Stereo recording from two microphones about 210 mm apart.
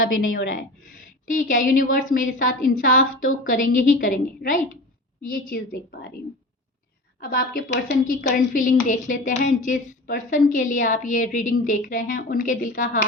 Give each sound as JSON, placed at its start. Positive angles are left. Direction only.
{"t": 1.3, "sound": "a woman's voice", "side_deg": 40}
{"t": 7.2, "sound": "a woman's voice", "side_deg": 45}